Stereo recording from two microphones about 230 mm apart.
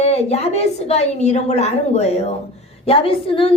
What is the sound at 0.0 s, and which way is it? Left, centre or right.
A woman's voice, left.